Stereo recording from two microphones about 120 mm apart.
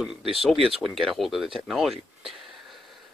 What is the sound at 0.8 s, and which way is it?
Speech, centre (ahead or behind).